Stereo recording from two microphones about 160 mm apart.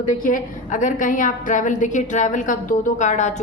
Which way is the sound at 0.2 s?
55° left (ahead or behind).